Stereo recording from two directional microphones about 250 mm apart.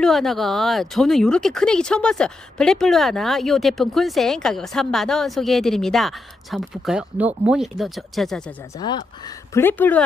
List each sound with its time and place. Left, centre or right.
0.0 s speech: centre
8.7 s speech: centre